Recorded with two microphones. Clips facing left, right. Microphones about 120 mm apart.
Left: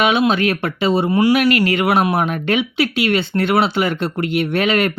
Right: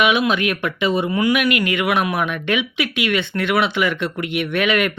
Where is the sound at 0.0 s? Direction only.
30° left (ahead or behind).